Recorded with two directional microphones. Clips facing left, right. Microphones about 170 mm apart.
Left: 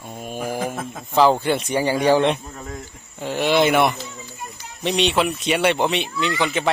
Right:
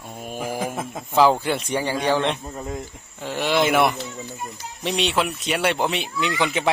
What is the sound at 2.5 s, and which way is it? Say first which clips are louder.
Speech: right 3 dB; 15° right (ahead or behind).